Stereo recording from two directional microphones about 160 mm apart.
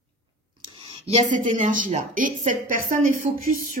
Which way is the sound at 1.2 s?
50° right (ahead or behind).